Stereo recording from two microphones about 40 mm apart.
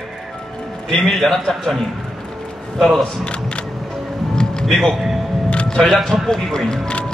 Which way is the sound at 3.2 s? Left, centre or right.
Left.